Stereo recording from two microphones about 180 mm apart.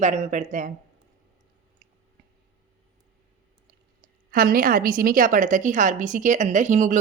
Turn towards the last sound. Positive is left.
turn(degrees=-45)  # may be behind; listen again after turning